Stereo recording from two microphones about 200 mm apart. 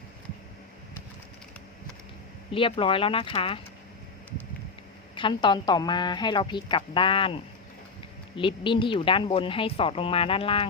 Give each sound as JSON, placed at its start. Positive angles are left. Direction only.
{"t": 2.5, "sound": "speech", "side_deg": 25}
{"t": 5.1, "sound": "speech", "side_deg": 25}
{"t": 8.4, "sound": "speech", "side_deg": 25}